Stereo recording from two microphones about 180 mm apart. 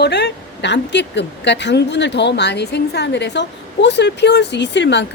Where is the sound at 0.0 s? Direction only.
70° left (ahead or behind).